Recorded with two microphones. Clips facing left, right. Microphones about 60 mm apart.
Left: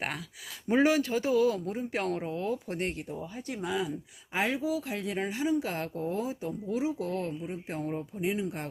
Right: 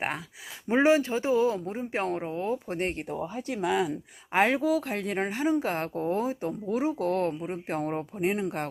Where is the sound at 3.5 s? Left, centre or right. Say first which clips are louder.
Right 5 dB; right.